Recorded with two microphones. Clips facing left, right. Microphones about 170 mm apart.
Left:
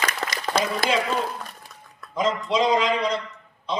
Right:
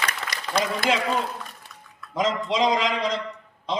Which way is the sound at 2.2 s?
90° right.